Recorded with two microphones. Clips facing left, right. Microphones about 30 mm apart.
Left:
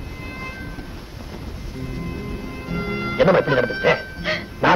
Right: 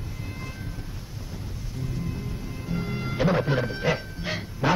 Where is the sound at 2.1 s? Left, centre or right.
Left.